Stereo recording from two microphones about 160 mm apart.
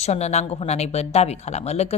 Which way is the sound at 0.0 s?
45° left (ahead or behind).